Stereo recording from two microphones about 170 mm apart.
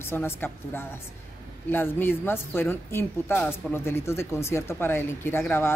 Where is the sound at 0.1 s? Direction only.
15° left (ahead or behind).